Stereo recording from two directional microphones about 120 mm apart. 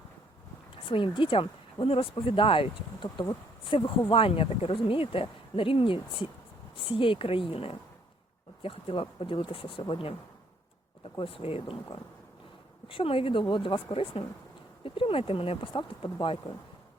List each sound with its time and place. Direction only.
0.9 s speech: 45° left (ahead or behind)
11.2 s speech: 50° left (ahead or behind)
12.9 s speech: 50° left (ahead or behind)